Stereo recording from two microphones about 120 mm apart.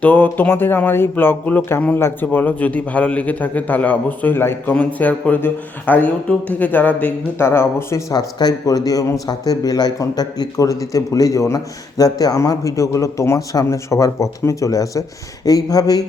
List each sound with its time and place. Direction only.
0.0 s speech: 15° left (ahead or behind)
8.1 s speech: 35° left (ahead or behind)